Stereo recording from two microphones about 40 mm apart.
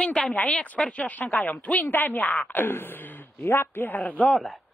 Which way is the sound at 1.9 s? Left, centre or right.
Left.